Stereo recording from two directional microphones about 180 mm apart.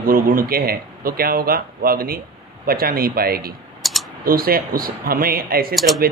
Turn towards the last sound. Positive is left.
turn(degrees=0)  # may be behind; listen again after turning